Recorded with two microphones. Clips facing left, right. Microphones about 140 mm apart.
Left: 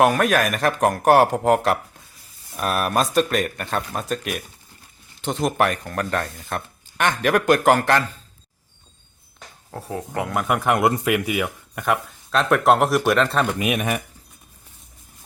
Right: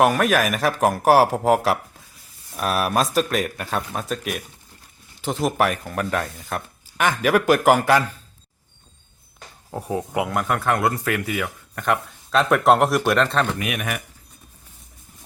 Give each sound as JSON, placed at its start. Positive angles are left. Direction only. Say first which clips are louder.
{"t": 0.0, "sound": "speech", "louder": "even", "side_deg": 0}
{"t": 9.7, "sound": "speech", "louder": "right 3 dB", "side_deg": -15}
{"t": 10.2, "sound": "speech", "louder": "left 5 dB", "side_deg": 5}
{"t": 13.5, "sound": "speech", "louder": "left 4 dB", "side_deg": 20}